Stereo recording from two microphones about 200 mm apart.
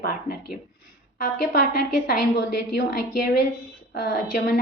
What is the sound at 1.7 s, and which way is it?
A woman's voice, 50° left (ahead or behind).